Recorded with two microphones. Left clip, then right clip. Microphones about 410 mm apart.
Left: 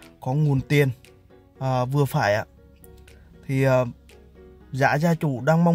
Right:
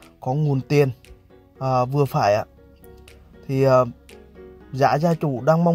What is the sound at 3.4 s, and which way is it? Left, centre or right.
Speech, centre.